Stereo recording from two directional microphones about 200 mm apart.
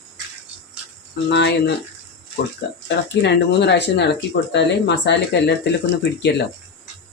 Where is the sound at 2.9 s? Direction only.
60° left (ahead or behind).